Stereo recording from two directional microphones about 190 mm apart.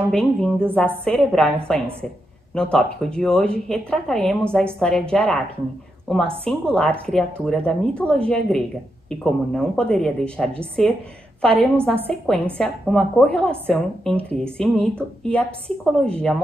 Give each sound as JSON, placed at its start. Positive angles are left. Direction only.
{"t": 0.1, "sound": "a woman's voice", "side_deg": 5}